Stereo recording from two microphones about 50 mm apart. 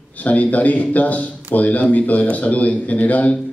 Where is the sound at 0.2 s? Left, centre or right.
Left.